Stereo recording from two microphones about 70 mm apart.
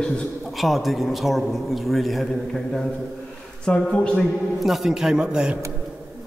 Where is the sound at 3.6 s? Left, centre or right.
Centre.